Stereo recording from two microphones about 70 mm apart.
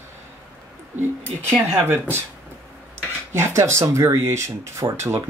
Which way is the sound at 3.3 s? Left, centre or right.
Right.